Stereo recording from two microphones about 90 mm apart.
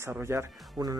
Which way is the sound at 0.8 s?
45° right (ahead or behind).